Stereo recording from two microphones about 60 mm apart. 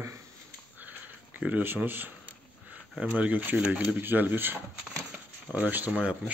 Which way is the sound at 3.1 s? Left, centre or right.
Right.